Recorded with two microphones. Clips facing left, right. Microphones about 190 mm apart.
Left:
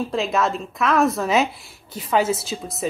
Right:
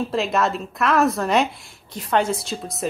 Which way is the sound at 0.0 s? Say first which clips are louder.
Even; centre (ahead or behind).